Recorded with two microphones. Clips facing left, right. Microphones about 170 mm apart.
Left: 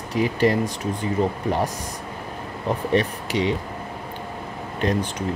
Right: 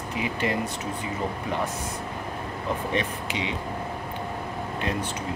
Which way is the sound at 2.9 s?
40° left (ahead or behind).